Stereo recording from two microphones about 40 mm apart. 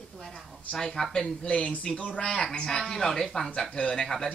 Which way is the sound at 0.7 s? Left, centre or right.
Centre.